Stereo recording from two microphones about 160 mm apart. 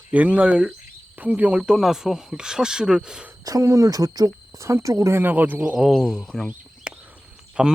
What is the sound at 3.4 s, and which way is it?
Speech, 20° right (ahead or behind).